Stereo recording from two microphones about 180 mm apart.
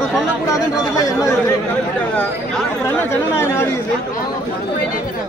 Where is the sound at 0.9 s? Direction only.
20° left (ahead or behind).